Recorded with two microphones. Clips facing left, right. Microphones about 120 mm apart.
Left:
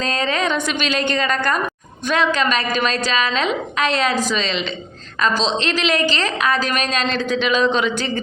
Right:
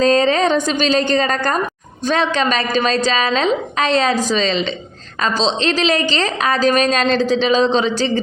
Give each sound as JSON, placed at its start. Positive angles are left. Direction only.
{"t": 0.0, "sound": "a woman's voice", "side_deg": -35}
{"t": 2.4, "sound": "a woman's voice", "side_deg": -35}